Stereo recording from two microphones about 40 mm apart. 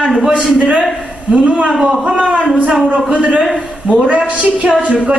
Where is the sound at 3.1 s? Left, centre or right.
Right.